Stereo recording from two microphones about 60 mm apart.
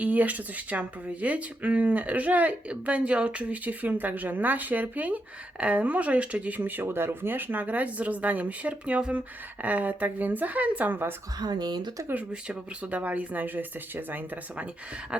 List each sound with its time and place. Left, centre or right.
0.0 s speech: right
6.6 s speech: right
12.3 s speech: centre
15.1 s a sound: centre